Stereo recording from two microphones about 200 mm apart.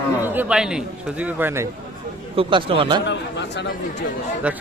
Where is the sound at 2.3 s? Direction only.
25° right (ahead or behind).